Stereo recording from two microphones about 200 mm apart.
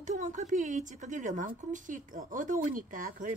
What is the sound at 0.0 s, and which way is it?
Speech, 40° right (ahead or behind).